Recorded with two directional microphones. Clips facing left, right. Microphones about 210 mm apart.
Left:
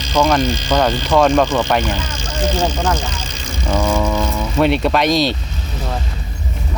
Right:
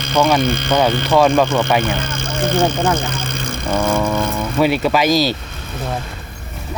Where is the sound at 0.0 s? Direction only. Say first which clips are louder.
Even; 55° right (ahead or behind).